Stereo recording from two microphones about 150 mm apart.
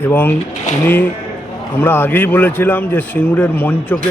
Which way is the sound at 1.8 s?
15° left (ahead or behind).